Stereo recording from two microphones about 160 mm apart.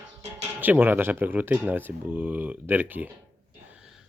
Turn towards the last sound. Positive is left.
turn(degrees=-10)  # may be behind; listen again after turning